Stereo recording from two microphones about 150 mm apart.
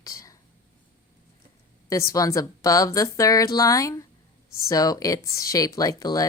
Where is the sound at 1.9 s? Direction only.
20° left (ahead or behind).